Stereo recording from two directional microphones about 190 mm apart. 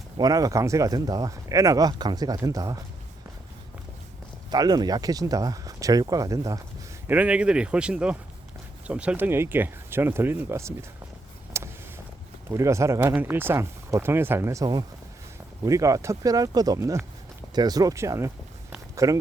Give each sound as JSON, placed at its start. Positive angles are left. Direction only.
{"t": 0.2, "sound": "speech", "side_deg": -20}
{"t": 4.5, "sound": "speech", "side_deg": -20}
{"t": 7.1, "sound": "speech", "side_deg": -5}
{"t": 11.6, "sound": "vehicle", "side_deg": -15}
{"t": 12.5, "sound": "speech", "side_deg": -15}